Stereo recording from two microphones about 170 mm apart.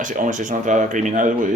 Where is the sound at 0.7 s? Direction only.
50° right (ahead or behind).